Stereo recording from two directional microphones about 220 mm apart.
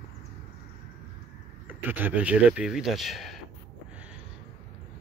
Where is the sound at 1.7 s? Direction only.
10° right (ahead or behind).